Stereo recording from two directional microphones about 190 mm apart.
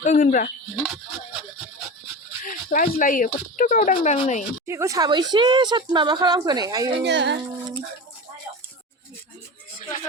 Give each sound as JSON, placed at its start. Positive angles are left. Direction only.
{"t": 0.0, "sound": "speech", "side_deg": 40}
{"t": 2.4, "sound": "speech", "side_deg": 45}
{"t": 4.6, "sound": "speech", "side_deg": -15}
{"t": 6.9, "sound": "speech", "side_deg": -65}